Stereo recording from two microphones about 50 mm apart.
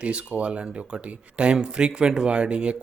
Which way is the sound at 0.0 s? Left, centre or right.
Right.